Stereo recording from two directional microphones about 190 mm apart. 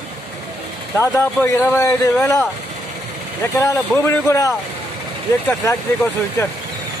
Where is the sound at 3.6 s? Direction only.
15° left (ahead or behind).